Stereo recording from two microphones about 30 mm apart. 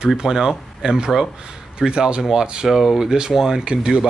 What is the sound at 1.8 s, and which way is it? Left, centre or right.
Speech, right.